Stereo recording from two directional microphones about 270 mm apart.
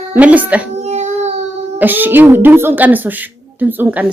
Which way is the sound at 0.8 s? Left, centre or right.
Right.